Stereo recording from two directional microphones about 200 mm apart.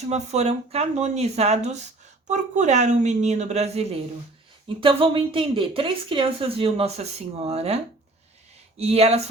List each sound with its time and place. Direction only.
0.1 s a woman's voice: 35° right (ahead or behind)
8.8 s speech: 30° right (ahead or behind)